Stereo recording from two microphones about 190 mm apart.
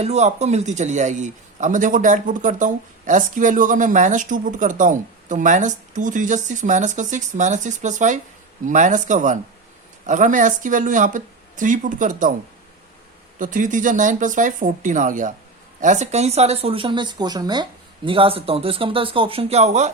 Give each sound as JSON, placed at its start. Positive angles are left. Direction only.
{"t": 0.0, "sound": "a man's voice", "side_deg": -35}
{"t": 13.4, "sound": "speech", "side_deg": -45}